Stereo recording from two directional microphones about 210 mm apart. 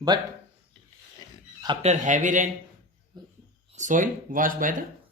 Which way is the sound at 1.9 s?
35° right (ahead or behind).